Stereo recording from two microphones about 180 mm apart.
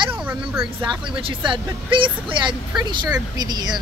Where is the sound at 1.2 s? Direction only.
25° right (ahead or behind).